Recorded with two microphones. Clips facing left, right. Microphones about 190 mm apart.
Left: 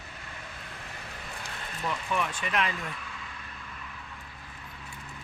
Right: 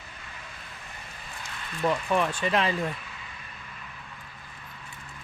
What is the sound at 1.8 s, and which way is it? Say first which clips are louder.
Speech: right 6 dB; 35° right (ahead or behind).